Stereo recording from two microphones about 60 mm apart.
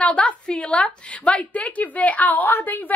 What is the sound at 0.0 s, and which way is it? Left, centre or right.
A woman's voice, centre.